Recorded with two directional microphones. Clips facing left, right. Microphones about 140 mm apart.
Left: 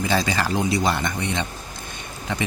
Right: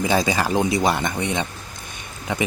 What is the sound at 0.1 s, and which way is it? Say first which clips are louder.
Speech: right 2 dB; 20° right (ahead or behind).